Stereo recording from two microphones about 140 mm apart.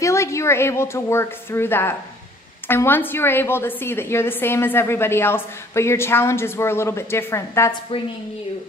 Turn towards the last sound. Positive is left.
turn(degrees=20)  # may be behind; listen again after turning